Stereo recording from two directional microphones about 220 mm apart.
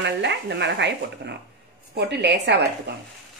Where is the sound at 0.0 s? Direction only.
50° right (ahead or behind).